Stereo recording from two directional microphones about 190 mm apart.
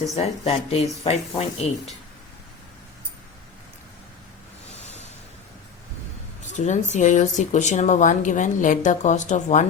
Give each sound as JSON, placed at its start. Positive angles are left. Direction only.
{"t": 0.2, "sound": "a woman's voice", "side_deg": 30}
{"t": 6.5, "sound": "a woman's voice", "side_deg": 40}